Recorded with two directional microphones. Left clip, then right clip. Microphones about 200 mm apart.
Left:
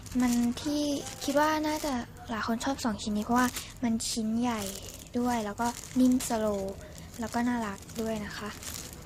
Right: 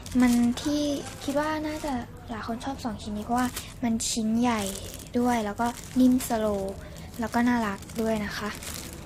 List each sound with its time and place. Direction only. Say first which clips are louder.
0.2 s speech: right 5 dB; centre (ahead or behind)
1.4 s a woman's voice: left 2 dB; 20° left (ahead or behind)
3.8 s speech: right 4 dB; 10° left (ahead or behind)